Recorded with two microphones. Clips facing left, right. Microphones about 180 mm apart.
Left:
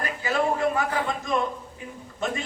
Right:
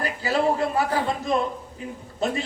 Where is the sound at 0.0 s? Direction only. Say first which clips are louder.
Right 3 dB; 35° right (ahead or behind).